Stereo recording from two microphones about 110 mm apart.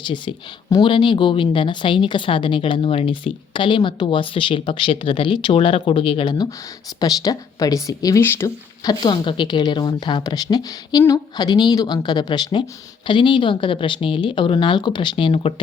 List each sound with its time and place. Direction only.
0.0 s speech: 45° left (ahead or behind)
7.0 s a woman's voice: 35° left (ahead or behind); by 15.5 s 55° left (ahead or behind)